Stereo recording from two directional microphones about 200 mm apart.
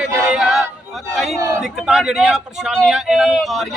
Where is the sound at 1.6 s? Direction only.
Centre (ahead or behind).